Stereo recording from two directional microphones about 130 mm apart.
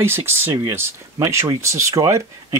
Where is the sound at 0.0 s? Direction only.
20° right (ahead or behind).